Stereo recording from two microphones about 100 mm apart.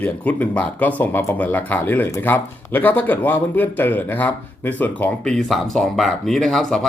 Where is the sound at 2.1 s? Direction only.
30° left (ahead or behind).